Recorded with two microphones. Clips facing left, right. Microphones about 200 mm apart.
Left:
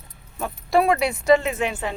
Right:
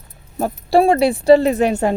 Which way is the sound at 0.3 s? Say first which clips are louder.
Right 6 dB; 35° right (ahead or behind).